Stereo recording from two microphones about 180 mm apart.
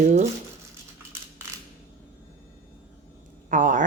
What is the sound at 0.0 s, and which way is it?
Speech, 40° right (ahead or behind).